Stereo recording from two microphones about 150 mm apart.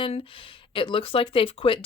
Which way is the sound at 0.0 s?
35° left (ahead or behind).